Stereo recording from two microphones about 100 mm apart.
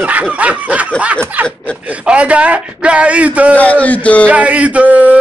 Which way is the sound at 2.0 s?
10° right (ahead or behind).